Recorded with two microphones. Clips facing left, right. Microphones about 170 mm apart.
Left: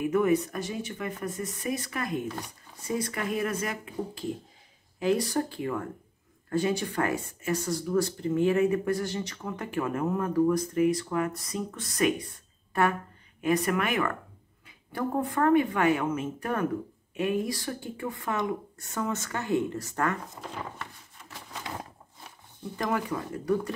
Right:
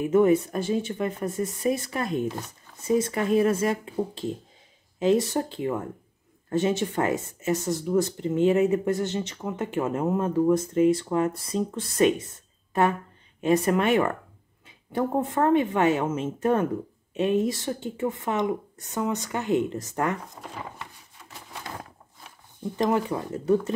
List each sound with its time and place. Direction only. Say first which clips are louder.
0.0 s speech: right 5 dB; 25° right (ahead or behind)
13.4 s speech: right 4 dB; 25° right (ahead or behind)
22.6 s speech: right 6 dB; 20° right (ahead or behind)